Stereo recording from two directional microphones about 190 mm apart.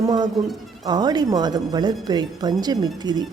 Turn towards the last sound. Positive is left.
turn(degrees=-20)  # may be behind; listen again after turning